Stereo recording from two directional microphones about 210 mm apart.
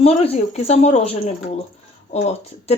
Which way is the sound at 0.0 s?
30° left (ahead or behind).